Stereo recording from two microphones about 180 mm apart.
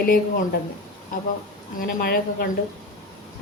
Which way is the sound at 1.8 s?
55° left (ahead or behind).